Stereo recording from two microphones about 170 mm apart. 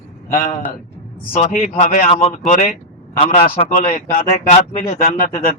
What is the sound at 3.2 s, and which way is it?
A man's voice, 30° left (ahead or behind).